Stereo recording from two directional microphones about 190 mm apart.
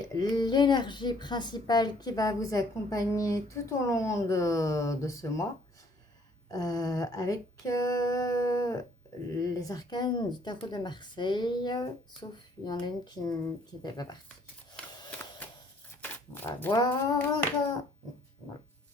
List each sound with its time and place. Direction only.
0.1 s a woman's voice: 20° left (ahead or behind)
6.5 s a woman's voice: 20° left (ahead or behind)
15.0 s a sound: 10° left (ahead or behind)
16.7 s a woman's voice: 20° left (ahead or behind)